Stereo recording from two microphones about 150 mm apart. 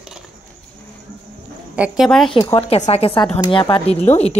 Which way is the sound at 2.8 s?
45° left (ahead or behind).